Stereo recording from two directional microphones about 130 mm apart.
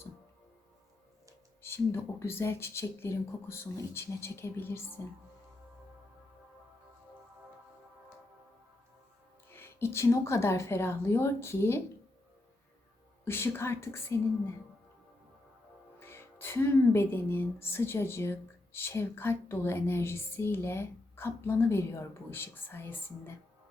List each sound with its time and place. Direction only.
1.6 s speech: 20° left (ahead or behind)
9.5 s speech: 20° left (ahead or behind)
13.2 s speech: 20° left (ahead or behind)
16.0 s speech: 20° left (ahead or behind)